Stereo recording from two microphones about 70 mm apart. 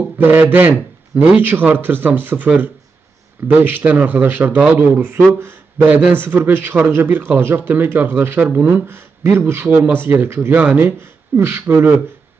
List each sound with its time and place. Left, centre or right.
0.2 s a man's voice: right
9.7 s a man's voice: right